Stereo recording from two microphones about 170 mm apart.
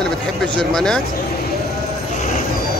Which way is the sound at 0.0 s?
5° left (ahead or behind).